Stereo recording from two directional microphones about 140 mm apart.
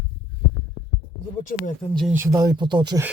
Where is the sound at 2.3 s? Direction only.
30° right (ahead or behind).